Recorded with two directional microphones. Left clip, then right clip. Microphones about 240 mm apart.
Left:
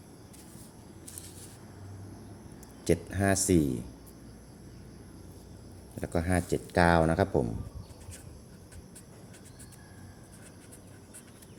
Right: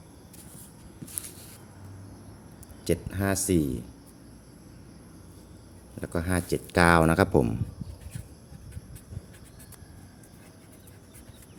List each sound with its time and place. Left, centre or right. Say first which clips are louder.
2.8 s speech: even; centre
6.0 s speech: even; centre; by 7.5 s right